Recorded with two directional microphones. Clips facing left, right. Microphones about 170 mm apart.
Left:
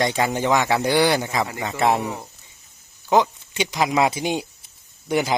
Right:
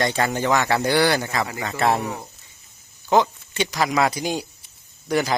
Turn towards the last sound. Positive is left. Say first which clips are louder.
# even
turn(degrees=20)  # may be behind; listen again after turning